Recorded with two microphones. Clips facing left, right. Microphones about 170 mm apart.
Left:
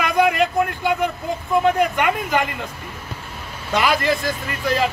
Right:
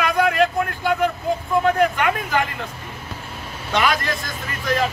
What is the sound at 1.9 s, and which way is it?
Speech, 15° left (ahead or behind).